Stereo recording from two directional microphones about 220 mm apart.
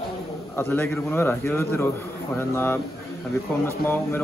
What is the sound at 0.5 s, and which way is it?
Speech, 10° left (ahead or behind).